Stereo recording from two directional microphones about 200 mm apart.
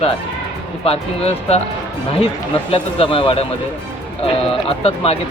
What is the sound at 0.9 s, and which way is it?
Speech, 30° left (ahead or behind).